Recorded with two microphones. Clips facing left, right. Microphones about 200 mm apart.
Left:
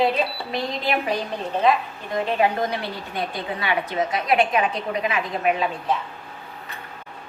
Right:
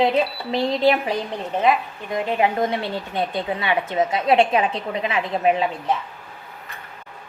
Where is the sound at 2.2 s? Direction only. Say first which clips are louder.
Right 1 dB; 20° right (ahead or behind).